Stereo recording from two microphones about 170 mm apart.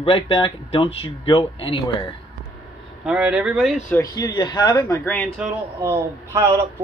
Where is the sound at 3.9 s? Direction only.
20° left (ahead or behind).